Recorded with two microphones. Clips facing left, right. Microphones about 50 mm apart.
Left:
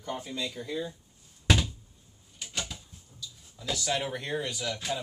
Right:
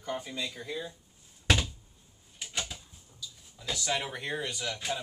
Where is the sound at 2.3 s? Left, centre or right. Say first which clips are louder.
Even; centre.